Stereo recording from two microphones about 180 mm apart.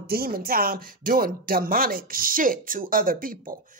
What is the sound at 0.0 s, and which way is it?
Speech, 55° right (ahead or behind).